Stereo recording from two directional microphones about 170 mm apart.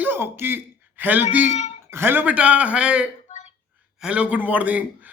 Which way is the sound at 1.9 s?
15° right (ahead or behind).